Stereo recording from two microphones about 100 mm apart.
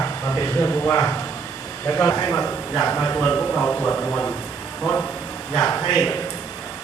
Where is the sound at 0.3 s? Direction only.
30° left (ahead or behind); by 5.0 s 10° left (ahead or behind).